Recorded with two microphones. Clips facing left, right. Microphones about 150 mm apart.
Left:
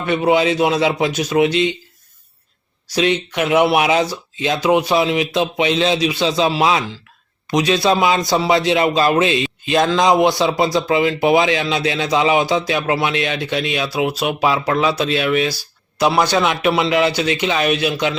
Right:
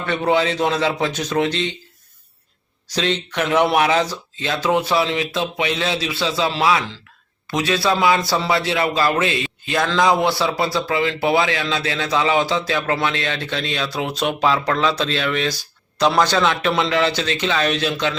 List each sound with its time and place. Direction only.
0.0 s a man's voice: 15° left (ahead or behind)
2.9 s a man's voice: 10° left (ahead or behind)